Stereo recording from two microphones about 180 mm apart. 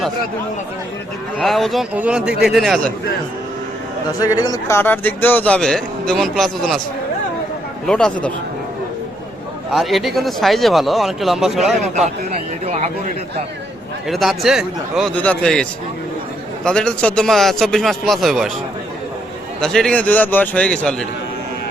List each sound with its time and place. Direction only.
1.4 s speech: centre (ahead or behind)
4.2 s a man's voice: 20° left (ahead or behind); by 6.7 s centre (ahead or behind)
7.9 s speech: 5° left (ahead or behind)
9.7 s speech: centre (ahead or behind)
12.6 s a sound: 35° right (ahead or behind)
14.1 s speech: centre (ahead or behind)
16.6 s speech: 5° left (ahead or behind)
19.6 s a man's voice: 5° left (ahead or behind)